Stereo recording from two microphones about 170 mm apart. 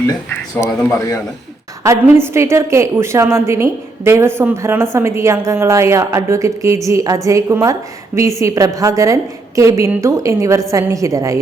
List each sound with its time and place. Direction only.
0.1 s speech: 15° left (ahead or behind)
1.8 s a woman's voice: 15° right (ahead or behind)